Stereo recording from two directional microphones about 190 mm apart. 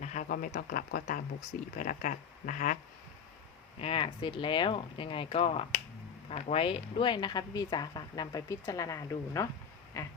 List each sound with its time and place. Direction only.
0.0 s speech: 40° left (ahead or behind)
3.8 s speech: 30° left (ahead or behind)
10.0 s a sound: 15° left (ahead or behind)